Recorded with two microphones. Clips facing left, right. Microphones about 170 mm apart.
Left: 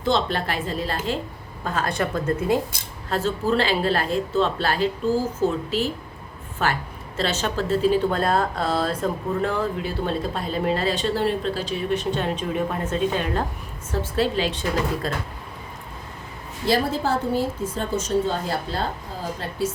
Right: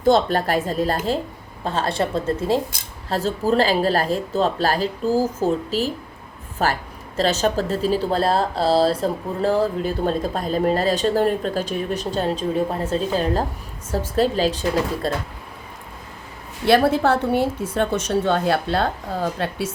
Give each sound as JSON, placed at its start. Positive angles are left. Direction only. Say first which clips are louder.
{"t": 0.0, "sound": "speech", "louder": "right 6 dB", "side_deg": -45}
{"t": 1.6, "sound": "a woman's voice", "louder": "right 2 dB", "side_deg": -30}
{"t": 3.1, "sound": "speech", "louder": "right 2 dB", "side_deg": -40}
{"t": 16.6, "sound": "a woman's voice", "louder": "right 6 dB", "side_deg": -65}